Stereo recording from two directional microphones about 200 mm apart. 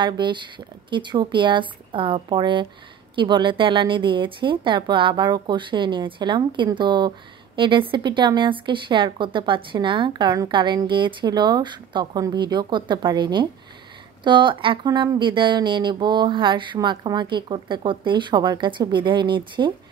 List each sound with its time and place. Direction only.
0.0 s a woman's voice: 25° right (ahead or behind)